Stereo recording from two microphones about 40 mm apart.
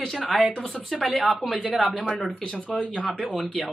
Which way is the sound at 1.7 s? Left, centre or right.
Centre.